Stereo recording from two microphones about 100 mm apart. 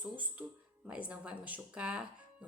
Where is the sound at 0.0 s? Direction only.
15° right (ahead or behind).